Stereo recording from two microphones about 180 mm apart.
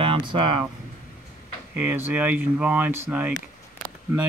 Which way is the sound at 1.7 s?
10° right (ahead or behind).